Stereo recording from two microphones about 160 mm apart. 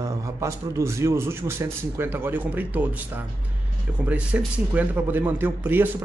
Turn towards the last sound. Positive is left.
turn(degrees=-10)  # may be behind; listen again after turning